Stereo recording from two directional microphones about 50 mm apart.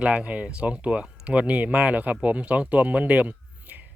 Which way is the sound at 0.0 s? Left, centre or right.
Right.